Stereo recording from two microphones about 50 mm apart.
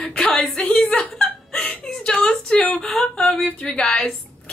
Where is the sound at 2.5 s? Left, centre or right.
Centre.